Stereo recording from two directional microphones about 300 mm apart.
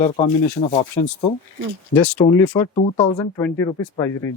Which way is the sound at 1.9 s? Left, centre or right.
Centre.